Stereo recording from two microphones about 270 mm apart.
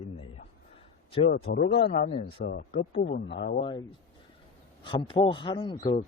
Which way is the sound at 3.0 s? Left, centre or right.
Left.